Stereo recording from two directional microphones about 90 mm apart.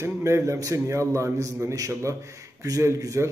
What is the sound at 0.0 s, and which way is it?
A man's voice, 30° right (ahead or behind).